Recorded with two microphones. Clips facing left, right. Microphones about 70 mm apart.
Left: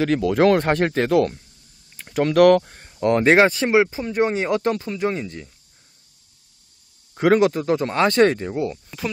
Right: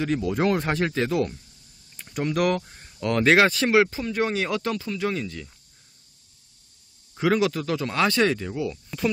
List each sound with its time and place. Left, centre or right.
0.0 s speech: left
0.7 s speech: left
2.1 s speech: left
2.9 s speech: left
7.2 s speech: left
7.5 s speech: left